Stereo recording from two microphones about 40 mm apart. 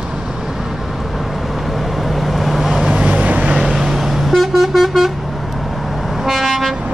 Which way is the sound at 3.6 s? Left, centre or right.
Centre.